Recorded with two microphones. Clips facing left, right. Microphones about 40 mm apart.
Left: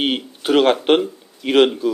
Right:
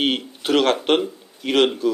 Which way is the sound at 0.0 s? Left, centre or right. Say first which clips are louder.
Left 1 dB; centre.